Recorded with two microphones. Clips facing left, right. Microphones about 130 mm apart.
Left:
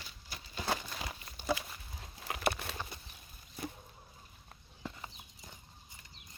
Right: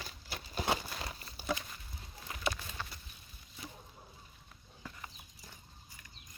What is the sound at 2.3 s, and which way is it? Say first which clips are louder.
Patter: left 4 dB; 70° left (ahead or behind).